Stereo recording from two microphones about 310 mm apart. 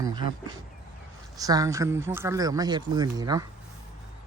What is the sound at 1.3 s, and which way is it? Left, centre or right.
Speech, centre.